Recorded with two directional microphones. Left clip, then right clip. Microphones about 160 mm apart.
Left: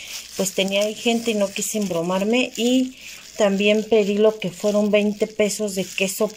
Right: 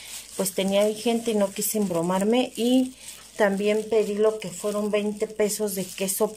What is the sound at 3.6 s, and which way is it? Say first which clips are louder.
Speech: left 5 dB; 20° left (ahead or behind).